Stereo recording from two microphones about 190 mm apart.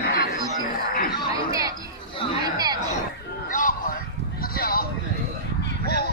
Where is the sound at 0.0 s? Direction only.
55° left (ahead or behind).